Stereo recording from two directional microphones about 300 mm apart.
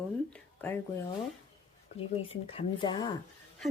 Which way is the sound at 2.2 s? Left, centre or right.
Centre.